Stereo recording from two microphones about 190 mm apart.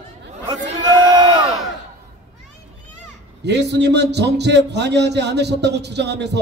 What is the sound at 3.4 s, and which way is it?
A man's voice, 65° right (ahead or behind).